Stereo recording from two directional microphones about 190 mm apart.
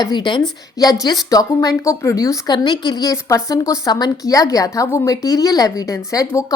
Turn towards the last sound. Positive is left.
turn(degrees=15)  # may be behind; listen again after turning